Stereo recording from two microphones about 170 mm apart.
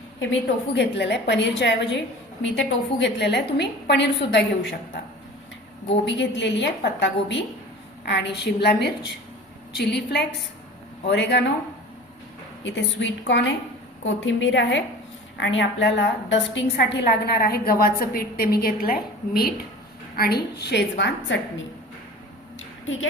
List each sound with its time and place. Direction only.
0.7 s a woman's voice: 90° left
6.1 s a woman's voice: 90° left
11.0 s a woman's voice: 90° left
12.6 s a woman's voice: 90° left